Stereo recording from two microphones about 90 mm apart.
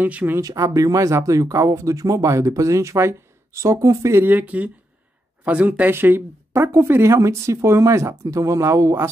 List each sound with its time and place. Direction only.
0.0 s speech: 20° right (ahead or behind)
0.4 s speech: 40° right (ahead or behind)